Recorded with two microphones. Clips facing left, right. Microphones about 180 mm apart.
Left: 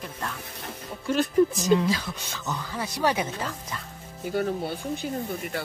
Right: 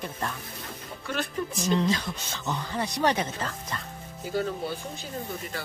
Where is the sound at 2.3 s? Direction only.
20° right (ahead or behind).